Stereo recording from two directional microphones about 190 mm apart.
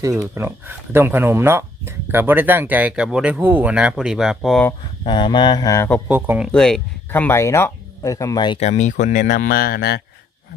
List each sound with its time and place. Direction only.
0.2 s speech: 10° right (ahead or behind)
5.0 s mantra: 25° left (ahead or behind)
6.1 s speech: 10° right (ahead or behind)
6.5 s speech: 5° left (ahead or behind); by 8.6 s 25° left (ahead or behind)
8.6 s speech: 40° left (ahead or behind); by 10.0 s 55° left (ahead or behind)